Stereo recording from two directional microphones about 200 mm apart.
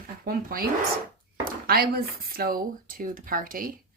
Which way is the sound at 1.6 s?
50° right (ahead or behind).